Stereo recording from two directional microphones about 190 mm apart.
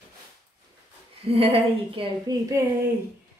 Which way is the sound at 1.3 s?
30° right (ahead or behind).